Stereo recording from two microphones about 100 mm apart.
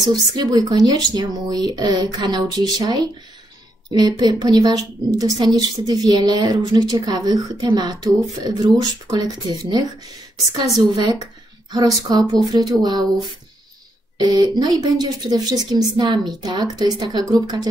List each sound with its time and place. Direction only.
0.1 s a woman's voice: 40° right (ahead or behind)
14.1 s speech: 40° right (ahead or behind)